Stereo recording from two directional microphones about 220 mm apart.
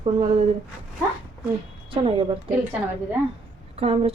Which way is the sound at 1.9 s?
25° right (ahead or behind).